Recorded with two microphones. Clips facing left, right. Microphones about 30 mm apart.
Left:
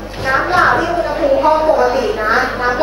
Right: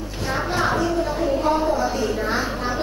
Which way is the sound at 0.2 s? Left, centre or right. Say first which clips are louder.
Left 10 dB; left.